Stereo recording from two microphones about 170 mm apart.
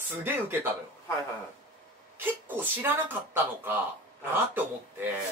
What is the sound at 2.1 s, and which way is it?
Speech, 10° right (ahead or behind).